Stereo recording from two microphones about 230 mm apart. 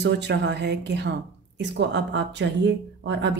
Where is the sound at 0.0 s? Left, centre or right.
Right.